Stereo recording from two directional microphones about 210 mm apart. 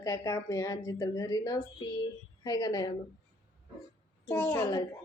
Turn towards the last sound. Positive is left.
turn(degrees=15)  # may be behind; listen again after turning